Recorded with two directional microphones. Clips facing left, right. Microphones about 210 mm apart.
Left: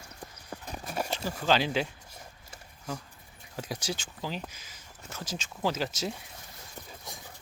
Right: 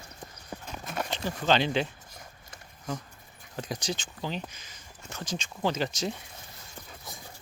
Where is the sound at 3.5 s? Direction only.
5° left (ahead or behind).